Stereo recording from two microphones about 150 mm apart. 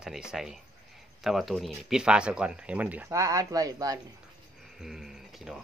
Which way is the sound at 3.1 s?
20° right (ahead or behind).